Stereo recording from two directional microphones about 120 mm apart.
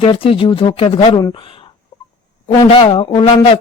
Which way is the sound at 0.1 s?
50° left (ahead or behind).